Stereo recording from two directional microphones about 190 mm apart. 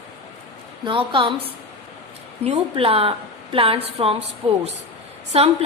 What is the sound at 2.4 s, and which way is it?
A woman's voice, 30° right (ahead or behind).